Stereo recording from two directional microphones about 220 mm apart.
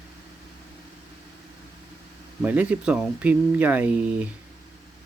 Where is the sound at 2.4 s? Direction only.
5° right (ahead or behind).